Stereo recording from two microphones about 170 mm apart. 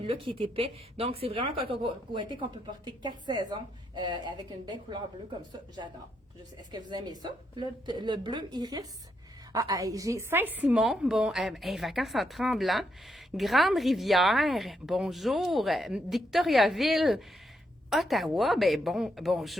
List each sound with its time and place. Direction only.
0.0 s speech: 35° right (ahead or behind)
6.7 s speech: 25° right (ahead or behind); by 19.5 s centre (ahead or behind)